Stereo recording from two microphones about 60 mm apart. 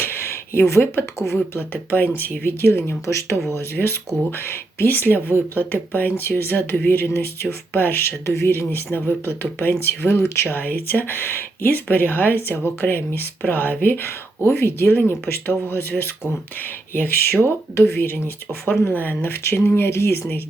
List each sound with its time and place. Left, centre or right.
0.0 s a sound: left
1.5 s speech: left
3.8 s speech: left
8.3 s speech: left